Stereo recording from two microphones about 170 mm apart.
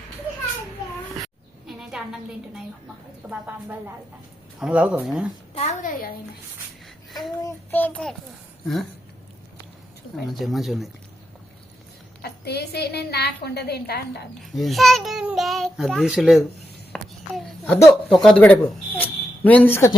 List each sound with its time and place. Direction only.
1.2 s a sound: centre (ahead or behind)
3.2 s speech: 10° right (ahead or behind)
5.5 s a child's voice: 45° left (ahead or behind)
7.7 s a child's voice: 10° left (ahead or behind)
10.2 s a child's voice: centre (ahead or behind)
12.2 s a woman's voice: 70° left (ahead or behind)
14.5 s a child's voice: centre (ahead or behind)
16.9 s a sound: 5° left (ahead or behind)
18.1 s a child's voice: centre (ahead or behind)